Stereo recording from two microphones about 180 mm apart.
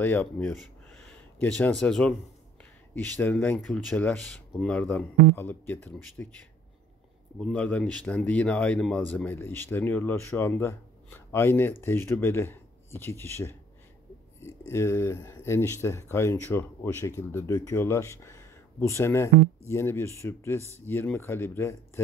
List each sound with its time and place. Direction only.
0.0 s speech: 10° left (ahead or behind)
7.3 s speech: 5° left (ahead or behind)
14.7 s speech: 15° left (ahead or behind)